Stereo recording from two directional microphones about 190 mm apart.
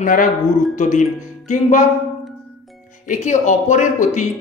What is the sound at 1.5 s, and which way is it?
Speech, 40° left (ahead or behind).